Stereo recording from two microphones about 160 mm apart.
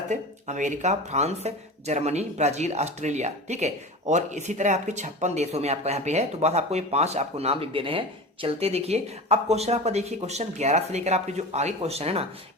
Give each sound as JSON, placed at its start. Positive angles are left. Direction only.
{"t": 0.1, "sound": "speech", "side_deg": -50}